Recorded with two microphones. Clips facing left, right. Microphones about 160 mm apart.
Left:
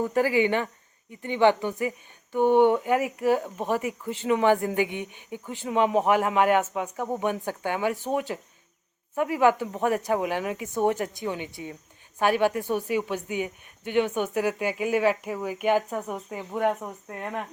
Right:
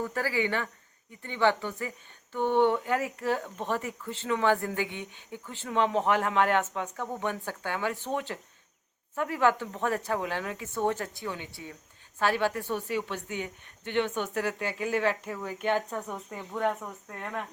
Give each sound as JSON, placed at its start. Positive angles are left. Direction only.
{"t": 0.0, "sound": "speech", "side_deg": 20}